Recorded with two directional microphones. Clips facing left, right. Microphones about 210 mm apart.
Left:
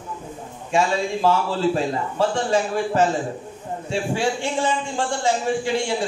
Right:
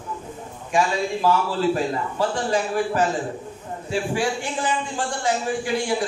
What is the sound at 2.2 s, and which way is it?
Speech, 25° left (ahead or behind).